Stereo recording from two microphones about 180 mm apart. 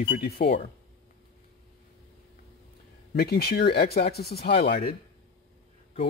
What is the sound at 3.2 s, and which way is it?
Speech, 60° left (ahead or behind).